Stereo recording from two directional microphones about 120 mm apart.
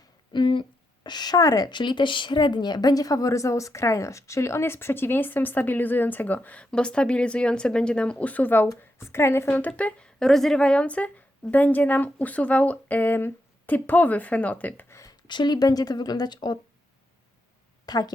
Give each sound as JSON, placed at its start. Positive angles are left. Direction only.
{"t": 0.3, "sound": "a sound", "side_deg": 45}
{"t": 1.0, "sound": "a woman's voice", "side_deg": 35}
{"t": 14.9, "sound": "speech", "side_deg": 30}
{"t": 17.8, "sound": "a woman's voice", "side_deg": 35}